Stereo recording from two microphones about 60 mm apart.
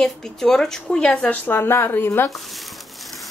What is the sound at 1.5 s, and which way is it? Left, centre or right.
Speech, left.